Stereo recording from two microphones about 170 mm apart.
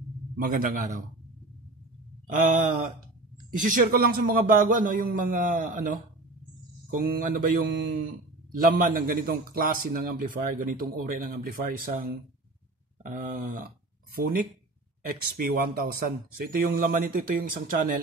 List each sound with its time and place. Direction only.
0.4 s a man's voice: 55° right (ahead or behind)
2.2 s a man's voice: 50° right (ahead or behind)
15.0 s a man's voice: 60° right (ahead or behind)